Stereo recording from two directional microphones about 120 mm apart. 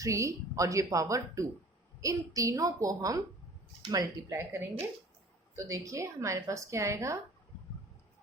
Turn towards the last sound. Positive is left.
turn(degrees=-25)  # may be behind; listen again after turning